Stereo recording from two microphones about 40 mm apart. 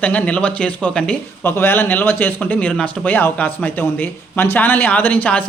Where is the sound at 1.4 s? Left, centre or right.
Left.